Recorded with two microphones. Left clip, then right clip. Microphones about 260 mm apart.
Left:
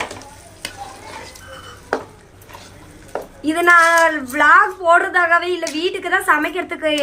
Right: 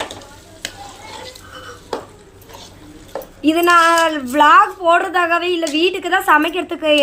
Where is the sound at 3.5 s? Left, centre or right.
Right.